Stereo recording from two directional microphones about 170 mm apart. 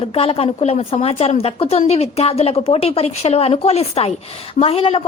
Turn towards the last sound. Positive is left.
turn(degrees=35)  # may be behind; listen again after turning